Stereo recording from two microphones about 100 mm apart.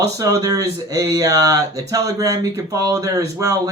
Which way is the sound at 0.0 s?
35° right (ahead or behind).